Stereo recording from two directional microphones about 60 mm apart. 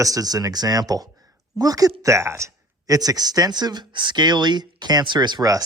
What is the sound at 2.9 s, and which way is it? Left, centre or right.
Speech, right.